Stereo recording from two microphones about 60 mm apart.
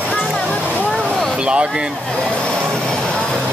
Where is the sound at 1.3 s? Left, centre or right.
Centre.